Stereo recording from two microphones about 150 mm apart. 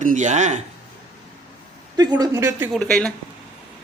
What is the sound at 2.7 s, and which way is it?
Speech, 5° left (ahead or behind).